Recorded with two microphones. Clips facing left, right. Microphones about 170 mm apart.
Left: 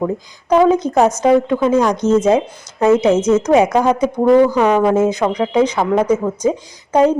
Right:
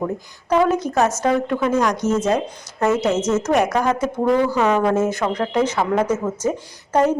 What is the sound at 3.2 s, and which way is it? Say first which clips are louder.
A woman's voice: left 6 dB; 15° left (ahead or behind).